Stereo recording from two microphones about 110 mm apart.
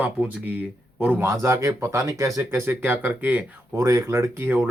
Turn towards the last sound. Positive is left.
turn(degrees=-20)  # may be behind; listen again after turning